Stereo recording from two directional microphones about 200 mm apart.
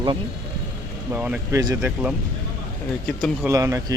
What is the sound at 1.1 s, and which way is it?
Speech, 5° right (ahead or behind).